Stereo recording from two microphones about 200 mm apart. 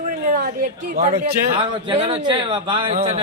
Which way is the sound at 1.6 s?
25° right (ahead or behind).